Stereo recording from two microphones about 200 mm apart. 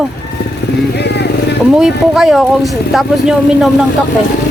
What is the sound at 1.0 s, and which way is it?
Vehicle, 55° left (ahead or behind).